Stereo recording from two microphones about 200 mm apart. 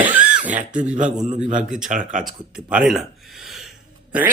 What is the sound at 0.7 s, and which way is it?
A man's voice, 40° right (ahead or behind).